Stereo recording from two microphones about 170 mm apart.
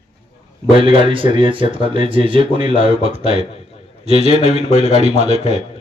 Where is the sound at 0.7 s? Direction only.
30° right (ahead or behind).